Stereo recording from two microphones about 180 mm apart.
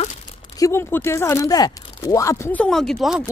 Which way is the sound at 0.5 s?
15° left (ahead or behind).